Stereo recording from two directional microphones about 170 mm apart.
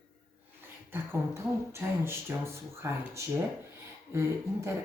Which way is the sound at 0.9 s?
15° right (ahead or behind).